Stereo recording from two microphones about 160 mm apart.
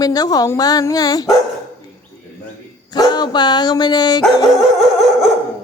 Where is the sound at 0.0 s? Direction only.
25° left (ahead or behind).